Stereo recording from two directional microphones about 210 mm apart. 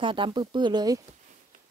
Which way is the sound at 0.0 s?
25° right (ahead or behind).